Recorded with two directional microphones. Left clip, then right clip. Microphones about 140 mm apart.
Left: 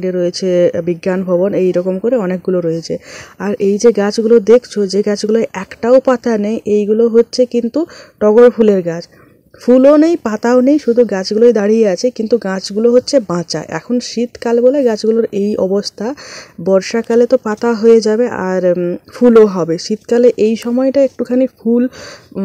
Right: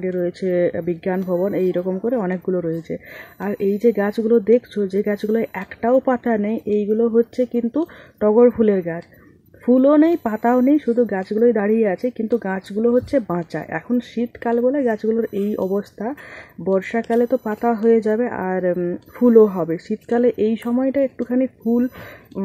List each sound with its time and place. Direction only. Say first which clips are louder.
0.0 s speech: left 7 dB; 25° left (ahead or behind)
4.7 s speech: left 7 dB; 15° left (ahead or behind)
5.4 s speech: left 6 dB; 30° left (ahead or behind)
6.9 s speech: left 7 dB; 10° left (ahead or behind)
19.4 s speech: left 6 dB; 35° left (ahead or behind)
20.1 s speech: left 8 dB; 20° left (ahead or behind)